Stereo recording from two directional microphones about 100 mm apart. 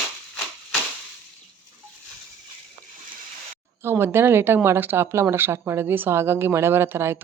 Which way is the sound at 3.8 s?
25° right (ahead or behind).